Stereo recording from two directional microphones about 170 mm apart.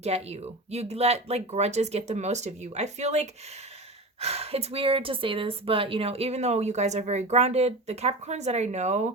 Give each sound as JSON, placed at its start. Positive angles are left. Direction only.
{"t": 0.0, "sound": "a woman's voice", "side_deg": -40}